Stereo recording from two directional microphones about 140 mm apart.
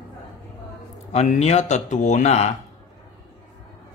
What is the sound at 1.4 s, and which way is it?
Speech, 50° left (ahead or behind).